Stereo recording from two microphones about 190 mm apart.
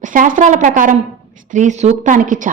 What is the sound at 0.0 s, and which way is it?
A woman's voice, 45° right (ahead or behind).